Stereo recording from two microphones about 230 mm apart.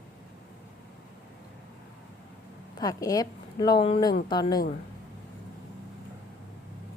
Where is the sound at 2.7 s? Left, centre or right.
Centre.